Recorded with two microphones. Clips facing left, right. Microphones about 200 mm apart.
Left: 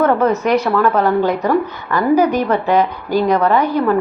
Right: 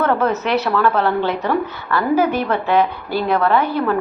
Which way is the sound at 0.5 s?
10° left (ahead or behind).